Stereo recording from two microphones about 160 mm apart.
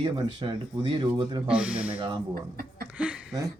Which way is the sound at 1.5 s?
5° right (ahead or behind).